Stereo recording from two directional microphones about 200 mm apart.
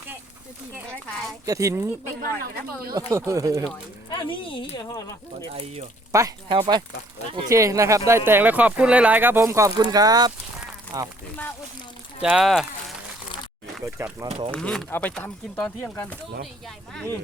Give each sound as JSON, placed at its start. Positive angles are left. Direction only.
{"t": 1.5, "sound": "speech", "side_deg": -15}
{"t": 2.2, "sound": "speech", "side_deg": -50}
{"t": 3.1, "sound": "speech", "side_deg": -15}
{"t": 4.2, "sound": "speech", "side_deg": 25}
{"t": 5.5, "sound": "speech", "side_deg": -30}
{"t": 6.1, "sound": "speech", "side_deg": -15}
{"t": 12.2, "sound": "speech", "side_deg": -5}
{"t": 13.8, "sound": "speech", "side_deg": -15}
{"t": 14.3, "sound": "speech", "side_deg": -30}
{"t": 14.5, "sound": "speech", "side_deg": 5}